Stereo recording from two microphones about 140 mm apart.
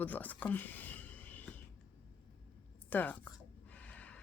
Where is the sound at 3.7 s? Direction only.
10° left (ahead or behind).